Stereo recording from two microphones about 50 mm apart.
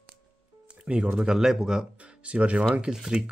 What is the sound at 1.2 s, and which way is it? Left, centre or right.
Speech, centre.